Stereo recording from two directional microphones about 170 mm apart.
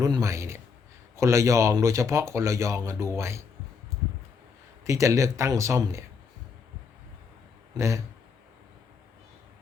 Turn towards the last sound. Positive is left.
turn(degrees=-15)  # may be behind; listen again after turning